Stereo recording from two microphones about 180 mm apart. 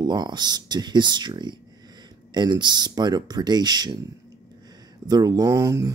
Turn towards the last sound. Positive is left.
turn(degrees=-15)  # may be behind; listen again after turning